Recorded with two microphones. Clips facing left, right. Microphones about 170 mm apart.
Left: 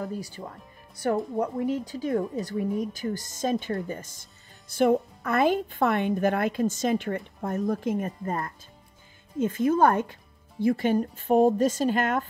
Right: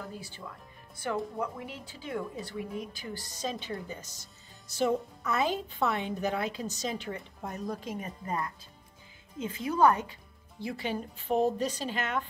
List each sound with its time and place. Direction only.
0.0 s speech: 40° left (ahead or behind)